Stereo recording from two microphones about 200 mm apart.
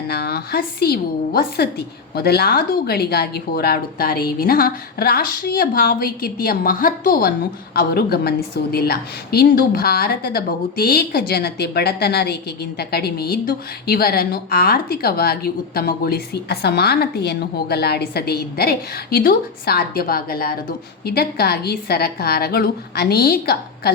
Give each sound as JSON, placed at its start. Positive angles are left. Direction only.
{"t": 0.1, "sound": "a woman's voice", "side_deg": 50}